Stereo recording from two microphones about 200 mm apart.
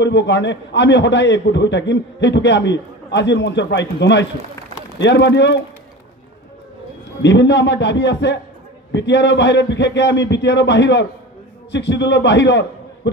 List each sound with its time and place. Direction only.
0.0 s a man's voice: 60° left (ahead or behind)
7.2 s a man's voice: 60° left (ahead or behind)